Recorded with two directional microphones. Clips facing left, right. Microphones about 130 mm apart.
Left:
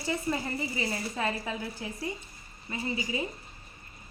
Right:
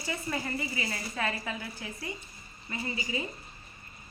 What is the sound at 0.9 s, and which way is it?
A woman's voice, 20° left (ahead or behind).